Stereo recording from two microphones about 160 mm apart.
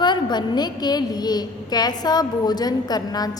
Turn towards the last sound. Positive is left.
turn(degrees=25)  # may be behind; listen again after turning